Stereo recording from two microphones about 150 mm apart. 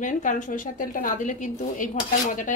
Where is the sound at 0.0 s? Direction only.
55° left (ahead or behind).